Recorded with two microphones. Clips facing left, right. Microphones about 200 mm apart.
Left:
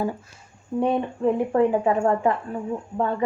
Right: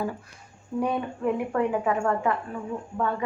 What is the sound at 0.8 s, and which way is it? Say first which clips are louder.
A woman's voice: left 4 dB; 30° left (ahead or behind).